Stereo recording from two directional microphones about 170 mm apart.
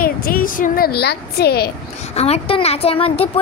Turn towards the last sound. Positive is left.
turn(degrees=35)  # may be behind; listen again after turning